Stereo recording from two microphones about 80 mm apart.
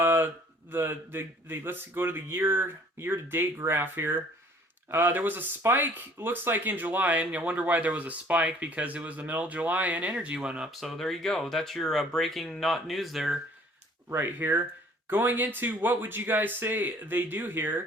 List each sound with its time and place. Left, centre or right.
0.0 s a sound: right
0.7 s speech: right; by 13.4 s centre
14.1 s speech: right